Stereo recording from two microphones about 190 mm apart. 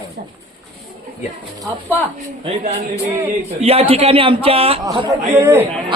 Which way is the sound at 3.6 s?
30° right (ahead or behind).